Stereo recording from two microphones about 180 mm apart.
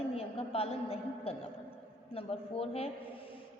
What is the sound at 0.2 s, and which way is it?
A woman's voice, 35° left (ahead or behind).